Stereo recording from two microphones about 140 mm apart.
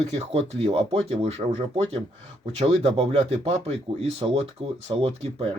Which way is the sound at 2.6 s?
50° right (ahead or behind).